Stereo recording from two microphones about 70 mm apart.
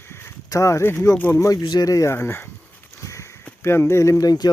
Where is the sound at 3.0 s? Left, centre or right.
Left.